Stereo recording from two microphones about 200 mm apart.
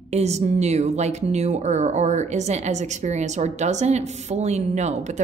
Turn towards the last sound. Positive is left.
turn(degrees=-35)  # may be behind; listen again after turning